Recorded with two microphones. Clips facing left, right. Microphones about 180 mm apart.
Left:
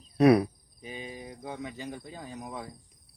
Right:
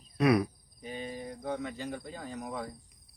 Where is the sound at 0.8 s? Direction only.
15° left (ahead or behind).